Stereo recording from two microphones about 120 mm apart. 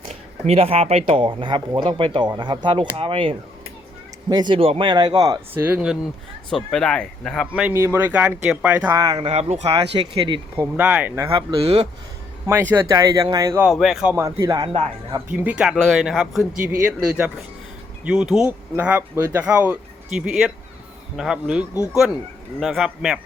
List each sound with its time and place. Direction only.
0.1 s speech: 60° right (ahead or behind)
4.3 s speech: 40° right (ahead or behind)
4.9 s speech: 35° right (ahead or behind)
5.6 s speech: 10° right (ahead or behind)
6.5 s speech: 5° left (ahead or behind)
7.7 s speech: 20° right (ahead or behind)
9.0 s speech: 30° right (ahead or behind)
9.2 s speech: 60° right (ahead or behind); by 10.4 s 45° right (ahead or behind)
10.6 s speech: 15° right (ahead or behind)
11.3 s speech: 50° right (ahead or behind)
12.5 s speech: 20° right (ahead or behind)
13.7 s speech: centre (ahead or behind)
14.1 s speech: 20° right (ahead or behind)
15.3 s speech: 10° right (ahead or behind)